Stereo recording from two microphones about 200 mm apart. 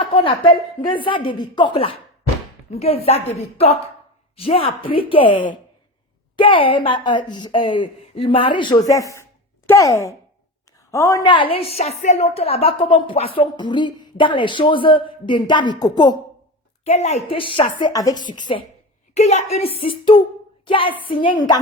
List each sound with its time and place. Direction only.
0.0 s a woman's voice: 25° left (ahead or behind)
16.8 s a woman's voice: 35° left (ahead or behind)
19.1 s a woman's voice: 35° left (ahead or behind)